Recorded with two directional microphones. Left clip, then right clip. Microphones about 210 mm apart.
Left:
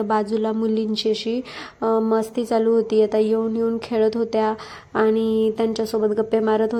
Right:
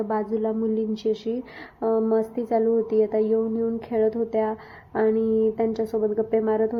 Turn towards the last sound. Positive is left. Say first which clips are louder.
# left 3 dB
turn(degrees=15)  # may be behind; listen again after turning